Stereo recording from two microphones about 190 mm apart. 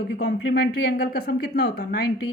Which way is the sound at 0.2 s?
55° left (ahead or behind).